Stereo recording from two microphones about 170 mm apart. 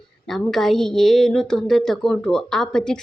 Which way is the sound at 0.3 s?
Centre (ahead or behind).